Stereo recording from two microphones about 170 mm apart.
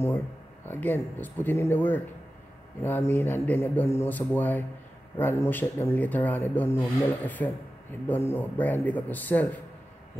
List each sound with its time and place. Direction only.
0.7 s speech: 10° left (ahead or behind)